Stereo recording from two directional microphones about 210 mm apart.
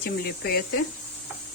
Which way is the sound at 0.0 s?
50° left (ahead or behind).